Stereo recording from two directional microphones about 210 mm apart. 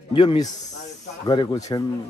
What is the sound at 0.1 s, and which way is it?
Speech, 25° left (ahead or behind).